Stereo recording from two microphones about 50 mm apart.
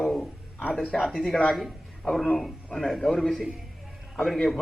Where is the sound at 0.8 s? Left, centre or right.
Centre.